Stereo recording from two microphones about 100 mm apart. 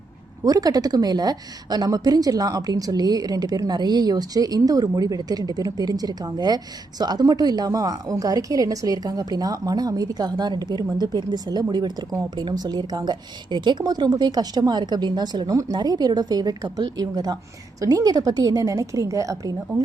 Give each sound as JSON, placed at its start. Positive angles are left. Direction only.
{"t": 0.4, "sound": "a woman's voice", "side_deg": -40}